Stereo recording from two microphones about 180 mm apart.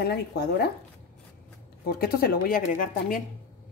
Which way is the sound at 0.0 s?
65° left (ahead or behind).